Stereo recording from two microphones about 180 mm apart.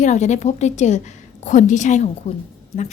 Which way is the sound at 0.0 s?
40° left (ahead or behind).